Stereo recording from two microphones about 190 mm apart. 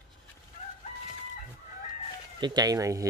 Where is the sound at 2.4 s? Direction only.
20° right (ahead or behind).